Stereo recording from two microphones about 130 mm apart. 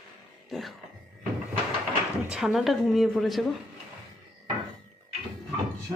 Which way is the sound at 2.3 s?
5° right (ahead or behind).